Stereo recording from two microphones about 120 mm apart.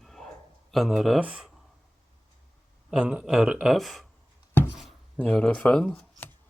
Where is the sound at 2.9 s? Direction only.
10° right (ahead or behind).